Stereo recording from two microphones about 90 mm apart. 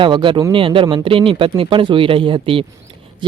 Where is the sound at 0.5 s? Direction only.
75° right (ahead or behind).